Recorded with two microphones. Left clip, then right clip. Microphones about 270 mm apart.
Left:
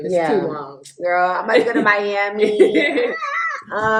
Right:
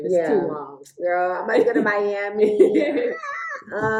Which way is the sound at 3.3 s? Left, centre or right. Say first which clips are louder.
Left 7 dB; centre.